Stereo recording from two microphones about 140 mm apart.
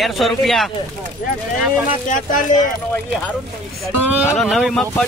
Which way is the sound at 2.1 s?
65° left (ahead or behind).